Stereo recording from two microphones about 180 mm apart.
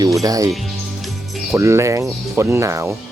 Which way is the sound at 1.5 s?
15° right (ahead or behind).